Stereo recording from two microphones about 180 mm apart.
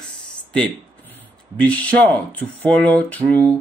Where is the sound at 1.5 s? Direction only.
5° left (ahead or behind).